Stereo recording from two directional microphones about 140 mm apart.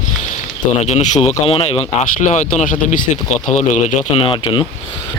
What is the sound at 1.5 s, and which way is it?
Speech, 45° left (ahead or behind).